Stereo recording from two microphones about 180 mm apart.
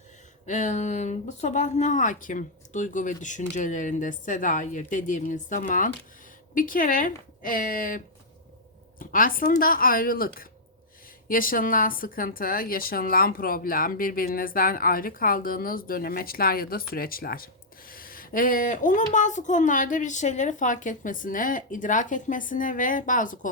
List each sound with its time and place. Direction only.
0.4 s a woman's voice: 40° left (ahead or behind)